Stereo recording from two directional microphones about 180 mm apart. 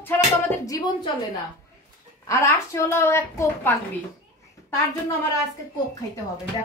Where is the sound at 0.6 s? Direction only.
20° left (ahead or behind).